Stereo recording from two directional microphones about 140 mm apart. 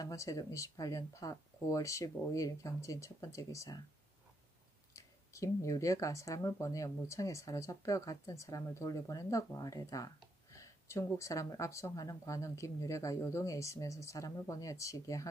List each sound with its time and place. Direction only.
0.0 s speech: 20° left (ahead or behind)
4.9 s speech: 20° left (ahead or behind)